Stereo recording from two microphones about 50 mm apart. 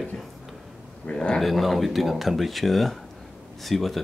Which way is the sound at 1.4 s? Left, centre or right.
Centre.